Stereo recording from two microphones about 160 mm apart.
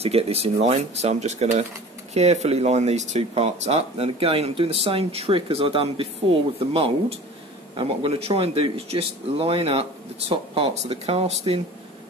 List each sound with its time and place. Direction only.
0.0 s speech: 40° right (ahead or behind)